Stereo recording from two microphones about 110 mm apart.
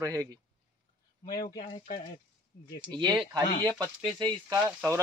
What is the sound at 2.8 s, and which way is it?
Speech, 45° right (ahead or behind).